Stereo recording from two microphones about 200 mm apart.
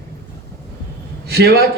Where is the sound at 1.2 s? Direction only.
55° right (ahead or behind).